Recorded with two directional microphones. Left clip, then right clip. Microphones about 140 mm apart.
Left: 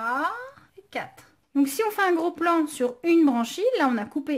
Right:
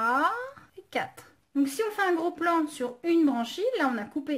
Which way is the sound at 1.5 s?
35° left (ahead or behind).